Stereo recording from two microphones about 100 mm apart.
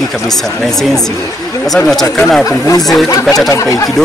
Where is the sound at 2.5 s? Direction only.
35° left (ahead or behind).